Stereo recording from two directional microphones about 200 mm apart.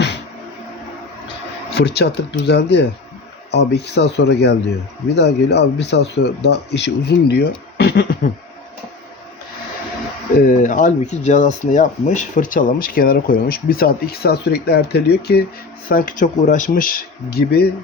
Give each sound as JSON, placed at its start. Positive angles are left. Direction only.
{"t": 1.7, "sound": "speech", "side_deg": 55}
{"t": 10.4, "sound": "speech", "side_deg": 40}
{"t": 15.9, "sound": "speech", "side_deg": 45}